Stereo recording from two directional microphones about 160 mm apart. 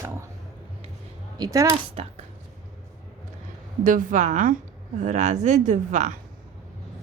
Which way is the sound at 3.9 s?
55° right (ahead or behind).